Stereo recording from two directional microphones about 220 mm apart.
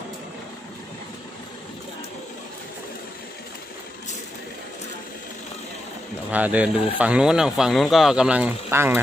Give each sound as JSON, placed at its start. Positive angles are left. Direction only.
{"t": 6.3, "sound": "speech", "side_deg": -5}